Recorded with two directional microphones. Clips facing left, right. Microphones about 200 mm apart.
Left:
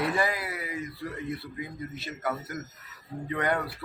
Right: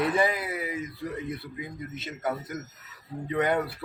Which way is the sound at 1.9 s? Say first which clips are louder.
Right 3 dB; 20° right (ahead or behind).